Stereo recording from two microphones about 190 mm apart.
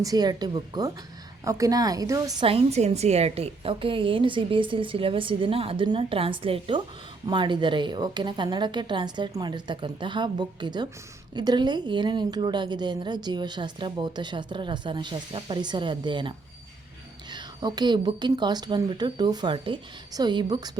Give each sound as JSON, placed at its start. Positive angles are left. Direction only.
{"t": 0.0, "sound": "a woman's voice", "side_deg": -20}
{"t": 2.5, "sound": "a woman's voice", "side_deg": -30}
{"t": 17.3, "sound": "a woman's voice", "side_deg": -20}